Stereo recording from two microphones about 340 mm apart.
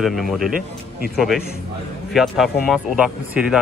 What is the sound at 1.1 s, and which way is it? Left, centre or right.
Speech, centre.